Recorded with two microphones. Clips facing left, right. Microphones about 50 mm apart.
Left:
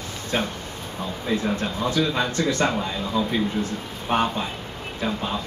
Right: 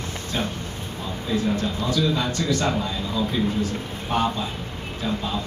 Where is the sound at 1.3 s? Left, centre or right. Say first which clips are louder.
Right 1 dB; left.